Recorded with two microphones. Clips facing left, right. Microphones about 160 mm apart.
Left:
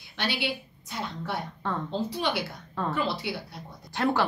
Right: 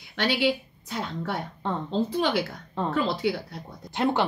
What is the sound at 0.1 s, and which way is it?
A woman's voice, 55° right (ahead or behind).